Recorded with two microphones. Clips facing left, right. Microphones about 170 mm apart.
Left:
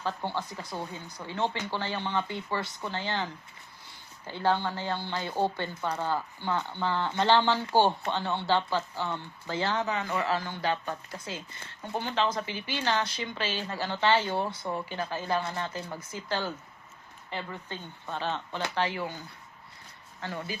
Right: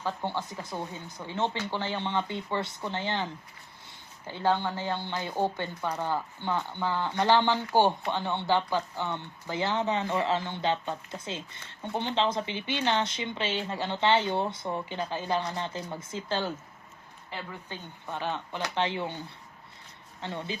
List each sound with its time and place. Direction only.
0.0 s speech: 15° right (ahead or behind)
20.5 s speech: 25° right (ahead or behind)